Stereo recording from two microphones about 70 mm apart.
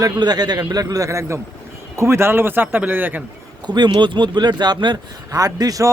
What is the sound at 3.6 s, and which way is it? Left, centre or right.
Speech, right.